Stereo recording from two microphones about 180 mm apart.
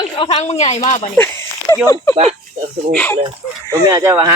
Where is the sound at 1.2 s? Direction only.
15° left (ahead or behind).